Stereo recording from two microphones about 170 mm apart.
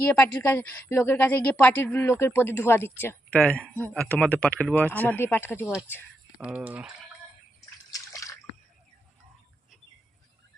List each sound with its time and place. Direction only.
0.0 s a woman's voice: 10° left (ahead or behind)
6.3 s speech: 5° right (ahead or behind)
7.9 s a sound: 20° left (ahead or behind)